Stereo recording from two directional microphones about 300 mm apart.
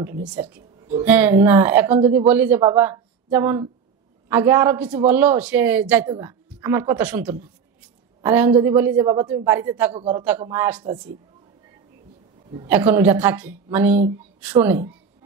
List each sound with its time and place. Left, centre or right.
0.2 s a man's voice: centre
9.9 s a man's voice: centre
10.2 s a man's voice: centre
12.6 s a man's voice: centre